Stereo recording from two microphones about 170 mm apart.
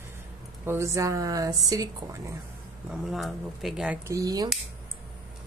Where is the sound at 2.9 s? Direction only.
Centre (ahead or behind); by 4.5 s 20° right (ahead or behind).